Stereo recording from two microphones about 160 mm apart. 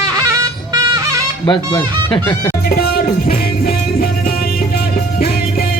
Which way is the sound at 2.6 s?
70° left (ahead or behind).